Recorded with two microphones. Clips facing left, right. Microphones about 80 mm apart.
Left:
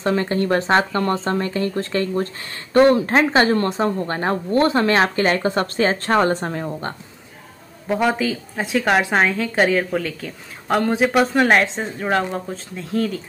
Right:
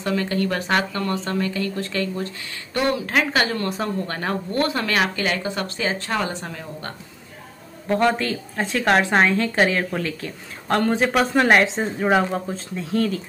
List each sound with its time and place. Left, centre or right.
0.0 s speech: left
7.9 s a woman's voice: centre